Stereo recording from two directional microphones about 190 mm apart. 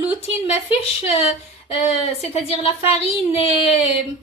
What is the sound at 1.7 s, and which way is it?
A woman's voice, 30° left (ahead or behind).